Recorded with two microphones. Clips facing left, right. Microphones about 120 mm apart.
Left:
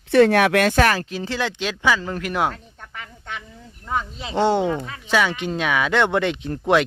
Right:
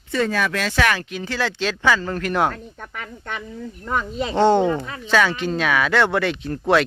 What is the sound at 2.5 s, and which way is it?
Speech, 80° right.